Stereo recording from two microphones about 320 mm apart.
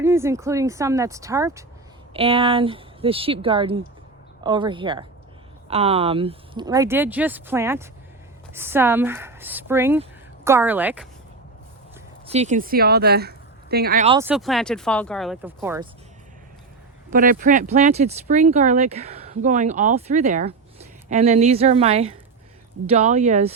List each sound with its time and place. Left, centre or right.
0.0 s speech: centre
12.2 s a woman's voice: centre
14.2 s speech: centre
17.1 s speech: right